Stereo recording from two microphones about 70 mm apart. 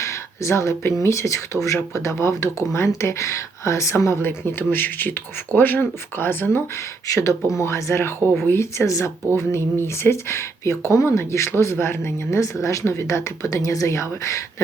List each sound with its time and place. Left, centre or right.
0.0 s a sound: left
1.0 s speech: left
4.2 s speech: left
7.1 s speech: left
8.9 s speech: left